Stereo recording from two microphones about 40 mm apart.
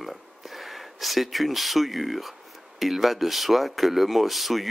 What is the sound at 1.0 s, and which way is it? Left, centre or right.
Speech, centre.